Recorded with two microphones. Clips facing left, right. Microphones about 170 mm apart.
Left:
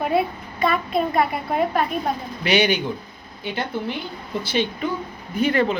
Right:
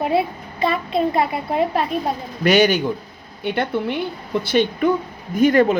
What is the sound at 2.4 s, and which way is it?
Speech, 45° right (ahead or behind).